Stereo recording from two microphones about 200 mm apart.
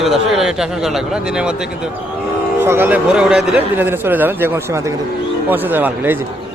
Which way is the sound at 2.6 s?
10° right (ahead or behind).